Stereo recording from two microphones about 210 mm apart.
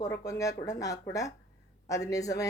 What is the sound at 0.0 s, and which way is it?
Speech, 15° left (ahead or behind).